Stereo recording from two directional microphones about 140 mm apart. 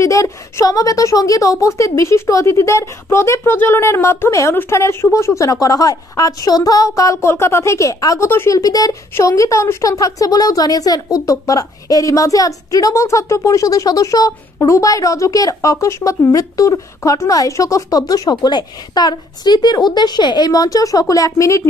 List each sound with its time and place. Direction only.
0.0 s speech: 20° left (ahead or behind)